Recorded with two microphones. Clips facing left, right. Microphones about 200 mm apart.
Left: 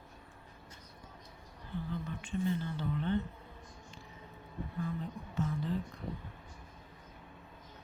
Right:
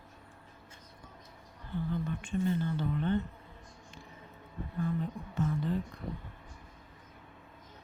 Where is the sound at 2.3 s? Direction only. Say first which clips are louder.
Right 3 dB; 45° right (ahead or behind).